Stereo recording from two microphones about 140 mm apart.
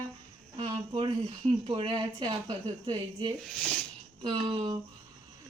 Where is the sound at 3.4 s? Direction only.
5° left (ahead or behind).